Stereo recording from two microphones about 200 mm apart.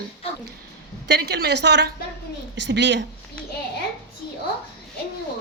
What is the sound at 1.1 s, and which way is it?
A woman's voice, 55° right (ahead or behind).